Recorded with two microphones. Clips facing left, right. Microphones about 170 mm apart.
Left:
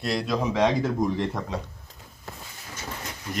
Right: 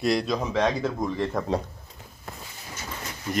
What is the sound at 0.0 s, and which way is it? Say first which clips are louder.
Speech: right 2 dB; centre (ahead or behind).